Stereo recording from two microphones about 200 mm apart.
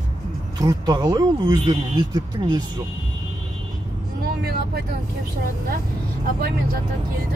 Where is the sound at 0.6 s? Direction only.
20° right (ahead or behind).